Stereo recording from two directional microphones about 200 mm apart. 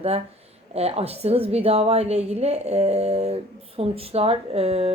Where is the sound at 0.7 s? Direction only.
30° right (ahead or behind).